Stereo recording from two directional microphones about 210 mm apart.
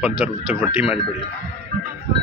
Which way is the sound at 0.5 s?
5° right (ahead or behind).